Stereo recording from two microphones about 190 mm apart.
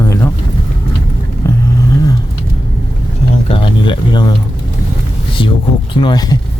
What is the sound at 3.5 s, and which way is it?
Speech, 25° left (ahead or behind).